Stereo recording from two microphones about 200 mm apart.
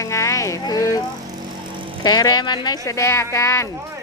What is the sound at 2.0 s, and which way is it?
Speech, 20° left (ahead or behind).